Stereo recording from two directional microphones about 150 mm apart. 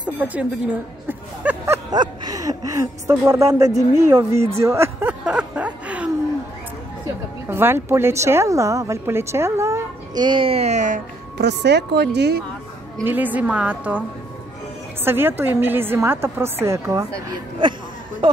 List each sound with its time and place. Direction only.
0.0 s speech: 10° right (ahead or behind)
1.9 s speech: 25° right (ahead or behind)
5.2 s music: 5° right (ahead or behind)
7.1 s a woman's voice: 15° right (ahead or behind)
10.2 s speech: 35° right (ahead or behind); by 11.0 s 50° right (ahead or behind)
11.9 s speech: 90° right
13.0 s a woman's voice: 10° right (ahead or behind)
15.0 s a woman's voice: 15° right (ahead or behind)
17.3 s speech: 30° right (ahead or behind)